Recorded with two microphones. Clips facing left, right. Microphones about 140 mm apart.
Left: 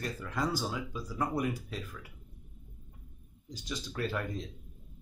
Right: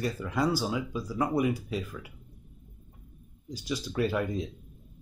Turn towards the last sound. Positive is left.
turn(degrees=-10)  # may be behind; listen again after turning